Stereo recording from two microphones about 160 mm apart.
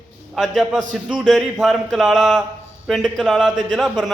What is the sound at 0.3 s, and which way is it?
A man's voice, centre (ahead or behind).